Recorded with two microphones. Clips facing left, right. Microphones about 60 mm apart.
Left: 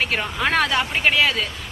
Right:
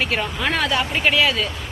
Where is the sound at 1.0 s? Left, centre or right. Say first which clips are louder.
Right 1 dB; left.